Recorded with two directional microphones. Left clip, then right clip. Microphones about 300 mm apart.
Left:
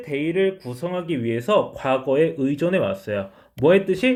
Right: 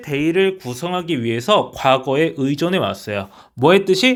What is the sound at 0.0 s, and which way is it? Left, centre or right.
Speech, right.